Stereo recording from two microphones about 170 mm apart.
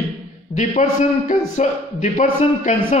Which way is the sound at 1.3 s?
45° left (ahead or behind).